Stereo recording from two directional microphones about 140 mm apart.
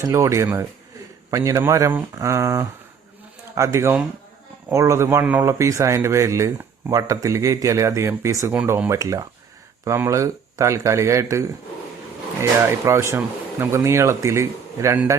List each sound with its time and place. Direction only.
0.0 s speech: 20° right (ahead or behind)